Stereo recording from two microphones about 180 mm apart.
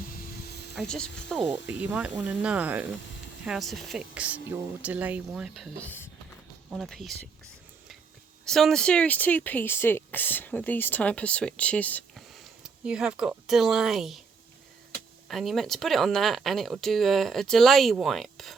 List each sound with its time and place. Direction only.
0.0 s a sound: 60° left (ahead or behind)
0.8 s speech: 5° left (ahead or behind)
1.6 s speech: 10° right (ahead or behind)
8.4 s speech: centre (ahead or behind)
15.3 s speech: centre (ahead or behind)